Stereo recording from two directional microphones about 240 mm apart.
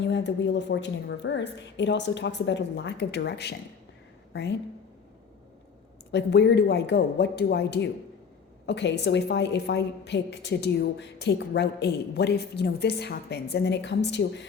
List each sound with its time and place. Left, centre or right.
0.0 s a woman's voice: left
6.1 s a woman's voice: left